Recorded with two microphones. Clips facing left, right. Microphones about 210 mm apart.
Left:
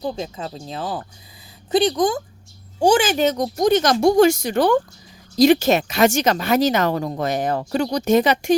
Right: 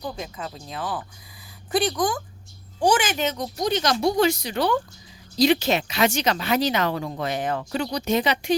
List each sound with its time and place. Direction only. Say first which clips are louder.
0.0 s speech: left 6 dB; 30° left (ahead or behind); by 8.5 s 45° left (ahead or behind)